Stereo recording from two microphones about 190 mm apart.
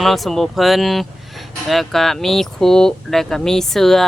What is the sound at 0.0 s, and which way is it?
Speech, centre (ahead or behind).